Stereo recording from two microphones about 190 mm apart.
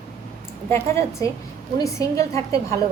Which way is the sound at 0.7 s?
15° left (ahead or behind).